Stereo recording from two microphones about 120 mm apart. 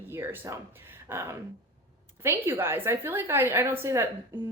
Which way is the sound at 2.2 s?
20° right (ahead or behind).